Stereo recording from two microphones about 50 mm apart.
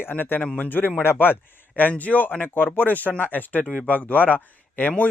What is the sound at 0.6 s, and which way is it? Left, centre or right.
Speech, left.